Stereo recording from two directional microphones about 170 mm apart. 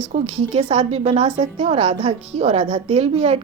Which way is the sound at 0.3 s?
35° right (ahead or behind).